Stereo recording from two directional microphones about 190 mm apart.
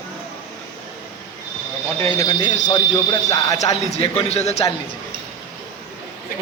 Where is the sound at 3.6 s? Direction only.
35° left (ahead or behind).